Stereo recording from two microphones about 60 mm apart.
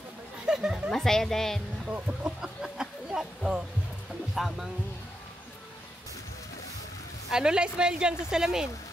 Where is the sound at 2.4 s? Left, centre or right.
Centre.